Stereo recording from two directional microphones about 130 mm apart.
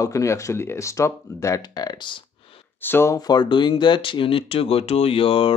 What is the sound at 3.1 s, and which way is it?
Speech, 30° left (ahead or behind).